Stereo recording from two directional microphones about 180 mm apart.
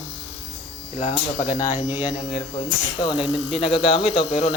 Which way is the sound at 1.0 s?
30° left (ahead or behind).